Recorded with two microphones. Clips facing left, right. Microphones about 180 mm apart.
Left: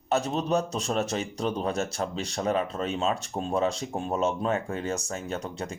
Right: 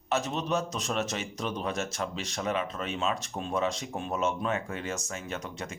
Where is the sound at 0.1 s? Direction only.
35° left (ahead or behind).